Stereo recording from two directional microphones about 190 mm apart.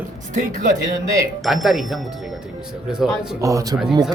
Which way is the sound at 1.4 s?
Centre (ahead or behind).